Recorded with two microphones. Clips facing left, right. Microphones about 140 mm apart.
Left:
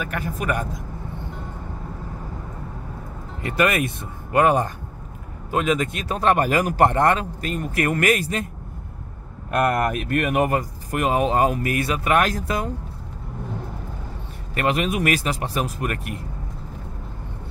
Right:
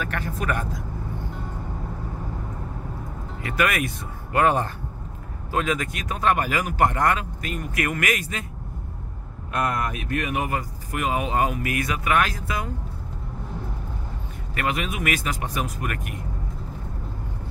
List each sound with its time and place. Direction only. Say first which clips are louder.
0.0 s speech: left 1 dB; 10° left (ahead or behind)
3.6 s speech: left 3 dB; 25° left (ahead or behind)
9.7 s speech: left 5 dB; 55° left (ahead or behind); by 12.6 s 40° left (ahead or behind)
14.5 s speech: left 5 dB; 35° left (ahead or behind)